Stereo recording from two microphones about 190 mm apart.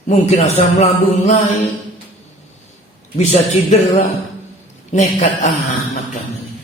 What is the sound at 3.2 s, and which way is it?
A man's voice, 35° left (ahead or behind).